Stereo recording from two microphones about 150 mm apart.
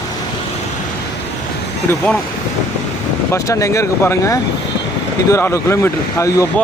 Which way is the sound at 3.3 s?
20° left (ahead or behind).